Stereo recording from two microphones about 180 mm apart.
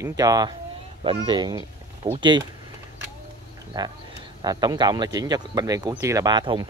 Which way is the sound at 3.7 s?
20° right (ahead or behind).